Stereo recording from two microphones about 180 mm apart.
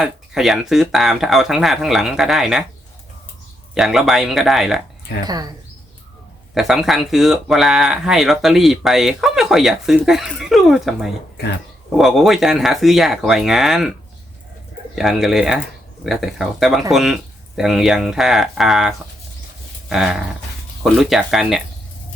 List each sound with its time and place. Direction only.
0.0 s speech: centre (ahead or behind)
3.8 s speech: centre (ahead or behind)
5.2 s speech: 20° right (ahead or behind)
6.5 s speech: centre (ahead or behind)
14.9 s speech: centre (ahead or behind)